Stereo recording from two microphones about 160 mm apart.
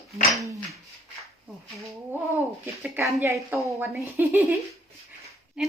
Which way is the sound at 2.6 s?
15° right (ahead or behind).